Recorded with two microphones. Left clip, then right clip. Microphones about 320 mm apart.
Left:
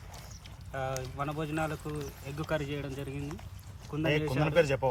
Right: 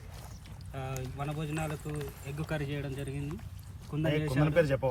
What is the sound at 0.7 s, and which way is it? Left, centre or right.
Speech, centre.